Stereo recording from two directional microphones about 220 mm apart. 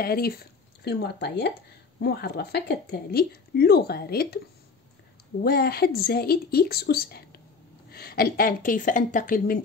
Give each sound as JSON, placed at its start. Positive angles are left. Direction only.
{"t": 0.0, "sound": "speech", "side_deg": 45}
{"t": 5.4, "sound": "a woman's voice", "side_deg": 45}